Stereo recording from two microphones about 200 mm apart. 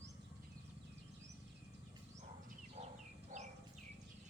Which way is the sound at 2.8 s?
35° right (ahead or behind).